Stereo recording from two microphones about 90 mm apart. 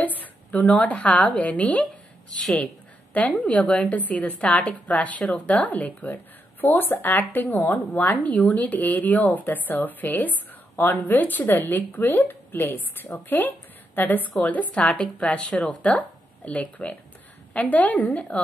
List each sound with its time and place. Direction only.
0.0 s a woman's voice: 20° left (ahead or behind)
3.1 s a sound: 15° left (ahead or behind)
3.4 s a woman's voice: 15° left (ahead or behind)